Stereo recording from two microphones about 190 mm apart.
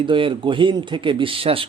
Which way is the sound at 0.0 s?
25° right (ahead or behind).